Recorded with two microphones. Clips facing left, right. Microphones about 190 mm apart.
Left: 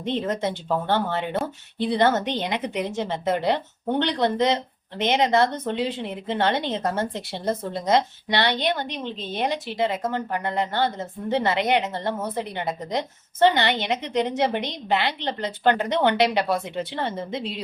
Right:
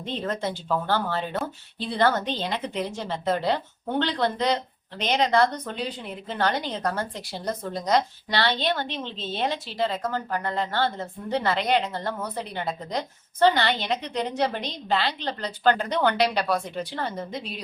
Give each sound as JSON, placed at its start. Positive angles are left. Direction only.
{"t": 0.0, "sound": "a woman's voice", "side_deg": 20}